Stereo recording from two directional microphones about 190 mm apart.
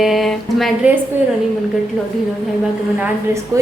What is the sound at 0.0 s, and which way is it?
Speech, centre (ahead or behind).